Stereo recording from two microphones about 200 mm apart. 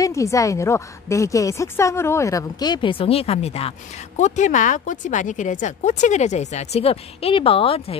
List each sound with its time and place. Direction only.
0.0 s a woman's voice: 15° left (ahead or behind)